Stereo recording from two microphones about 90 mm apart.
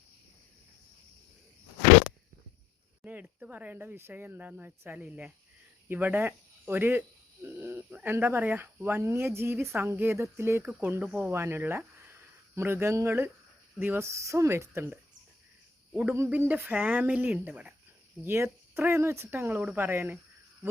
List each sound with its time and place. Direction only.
3.0 s speech: 15° right (ahead or behind)
16.1 s speech: 30° right (ahead or behind)
18.3 s speech: 30° right (ahead or behind)